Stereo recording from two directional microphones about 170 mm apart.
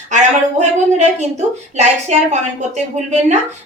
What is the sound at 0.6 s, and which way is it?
A woman's voice, 40° right (ahead or behind).